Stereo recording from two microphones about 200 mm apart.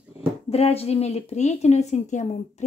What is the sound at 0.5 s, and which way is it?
A woman's voice, 30° left (ahead or behind).